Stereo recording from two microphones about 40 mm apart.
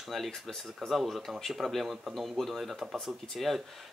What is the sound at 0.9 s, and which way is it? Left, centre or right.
Speech, centre.